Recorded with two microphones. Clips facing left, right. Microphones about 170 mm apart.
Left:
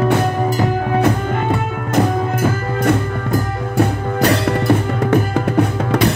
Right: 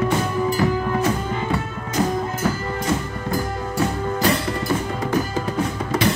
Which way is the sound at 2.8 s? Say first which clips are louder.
Left 10 dB; 60° left (ahead or behind).